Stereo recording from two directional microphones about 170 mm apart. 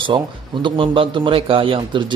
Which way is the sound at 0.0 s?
30° right (ahead or behind).